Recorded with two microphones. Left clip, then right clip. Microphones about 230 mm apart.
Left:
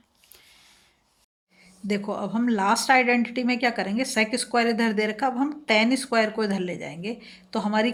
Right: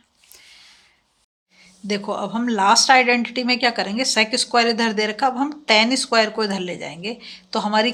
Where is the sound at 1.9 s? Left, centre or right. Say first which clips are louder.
Right 4 dB; right.